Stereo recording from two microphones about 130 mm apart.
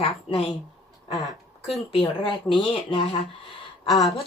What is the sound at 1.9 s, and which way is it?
Speech, 45° left (ahead or behind).